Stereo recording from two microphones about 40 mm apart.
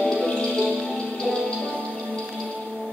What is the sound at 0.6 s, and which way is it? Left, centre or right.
Music, centre.